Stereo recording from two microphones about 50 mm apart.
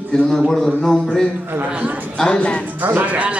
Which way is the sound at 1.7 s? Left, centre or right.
Right.